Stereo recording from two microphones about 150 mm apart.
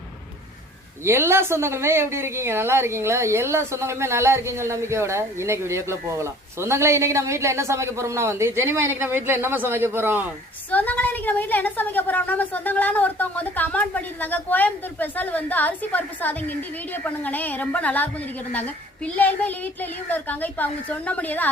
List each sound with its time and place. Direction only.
1.0 s a woman's voice: 15° right (ahead or behind)
10.7 s a woman's voice: 10° left (ahead or behind)